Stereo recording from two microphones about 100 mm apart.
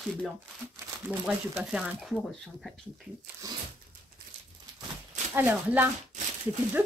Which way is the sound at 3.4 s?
35° right (ahead or behind).